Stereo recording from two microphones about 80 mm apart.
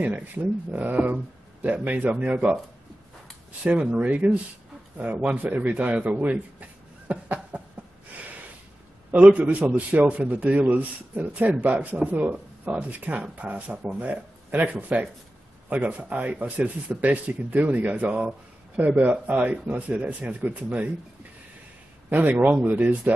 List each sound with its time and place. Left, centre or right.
0.0 s a man's voice: right
3.6 s a man's voice: centre
9.1 s a man's voice: centre
22.1 s a man's voice: right